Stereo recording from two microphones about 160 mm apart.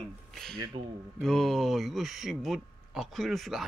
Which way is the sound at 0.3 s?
Centre (ahead or behind).